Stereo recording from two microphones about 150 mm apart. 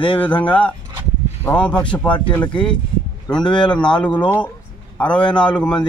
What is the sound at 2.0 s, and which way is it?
Speech, 30° left (ahead or behind).